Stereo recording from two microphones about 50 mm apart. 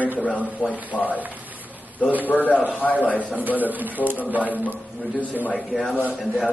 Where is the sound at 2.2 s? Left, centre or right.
Left.